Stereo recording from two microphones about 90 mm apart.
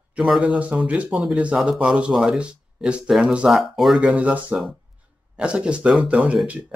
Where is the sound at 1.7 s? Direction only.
10° right (ahead or behind).